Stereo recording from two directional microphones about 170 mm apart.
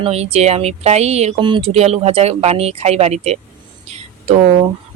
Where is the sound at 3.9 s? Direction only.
35° right (ahead or behind).